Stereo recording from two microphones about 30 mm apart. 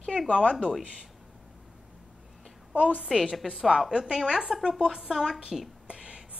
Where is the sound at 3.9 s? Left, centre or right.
Right.